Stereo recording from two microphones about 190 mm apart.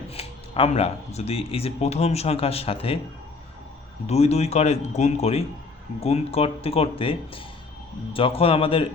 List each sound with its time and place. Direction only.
0.1 s speech: 30° left (ahead or behind)
4.0 s speech: 35° left (ahead or behind)